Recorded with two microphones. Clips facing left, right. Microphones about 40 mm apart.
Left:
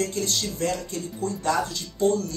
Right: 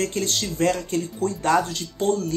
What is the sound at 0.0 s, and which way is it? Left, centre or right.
Speech, right.